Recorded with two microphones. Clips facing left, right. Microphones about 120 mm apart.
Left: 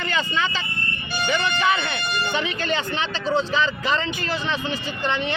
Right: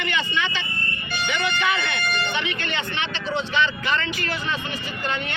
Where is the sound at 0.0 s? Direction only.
35° left (ahead or behind).